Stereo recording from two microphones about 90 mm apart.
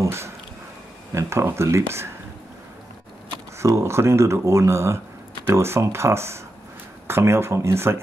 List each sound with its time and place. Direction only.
0.0 s a sound: 30° right (ahead or behind)
1.1 s speech: 30° right (ahead or behind)
3.5 s speech: 30° right (ahead or behind)